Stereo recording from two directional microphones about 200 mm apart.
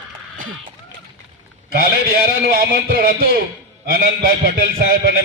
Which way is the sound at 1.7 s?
50° right (ahead or behind).